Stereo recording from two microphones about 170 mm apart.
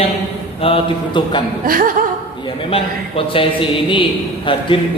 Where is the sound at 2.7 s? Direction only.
35° left (ahead or behind).